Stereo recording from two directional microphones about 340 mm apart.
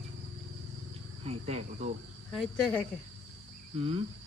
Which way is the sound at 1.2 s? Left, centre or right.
Centre.